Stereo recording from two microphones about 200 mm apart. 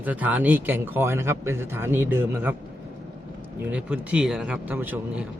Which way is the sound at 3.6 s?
10° right (ahead or behind).